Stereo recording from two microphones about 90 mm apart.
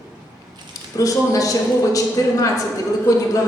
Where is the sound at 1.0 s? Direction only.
40° left (ahead or behind).